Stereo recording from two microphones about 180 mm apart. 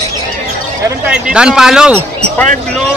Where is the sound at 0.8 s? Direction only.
5° right (ahead or behind).